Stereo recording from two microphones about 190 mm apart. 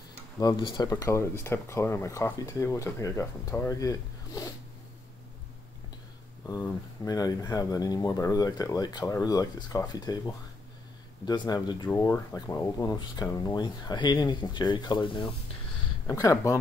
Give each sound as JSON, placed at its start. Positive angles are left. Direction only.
{"t": 0.4, "sound": "speech", "side_deg": 20}
{"t": 6.4, "sound": "speech", "side_deg": 15}